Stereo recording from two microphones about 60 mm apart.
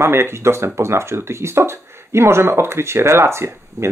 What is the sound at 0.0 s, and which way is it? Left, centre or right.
Speech, right.